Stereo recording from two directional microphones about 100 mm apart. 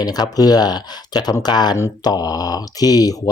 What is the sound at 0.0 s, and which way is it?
Speech, 40° left (ahead or behind).